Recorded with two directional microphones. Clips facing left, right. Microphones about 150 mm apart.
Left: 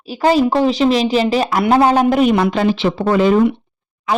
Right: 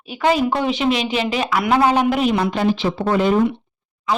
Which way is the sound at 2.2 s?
70° left (ahead or behind).